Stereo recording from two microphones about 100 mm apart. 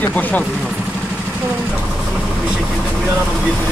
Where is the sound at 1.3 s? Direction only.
20° right (ahead or behind).